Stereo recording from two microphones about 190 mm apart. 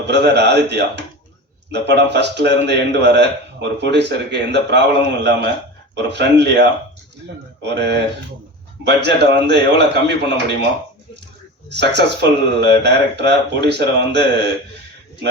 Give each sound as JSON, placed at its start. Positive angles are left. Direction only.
{"t": 0.0, "sound": "a man's voice", "side_deg": -65}
{"t": 11.7, "sound": "a man's voice", "side_deg": -65}